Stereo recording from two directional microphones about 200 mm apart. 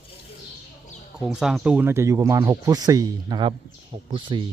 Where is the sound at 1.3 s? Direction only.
5° right (ahead or behind); by 4.4 s 25° right (ahead or behind).